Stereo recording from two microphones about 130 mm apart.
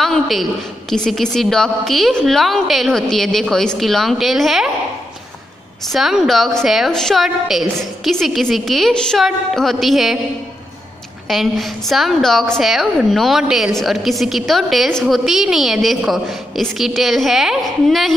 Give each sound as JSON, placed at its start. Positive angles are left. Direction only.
{"t": 0.0, "sound": "a woman's voice", "side_deg": 0}
{"t": 5.9, "sound": "a woman's voice", "side_deg": 0}
{"t": 11.2, "sound": "a woman's voice", "side_deg": 0}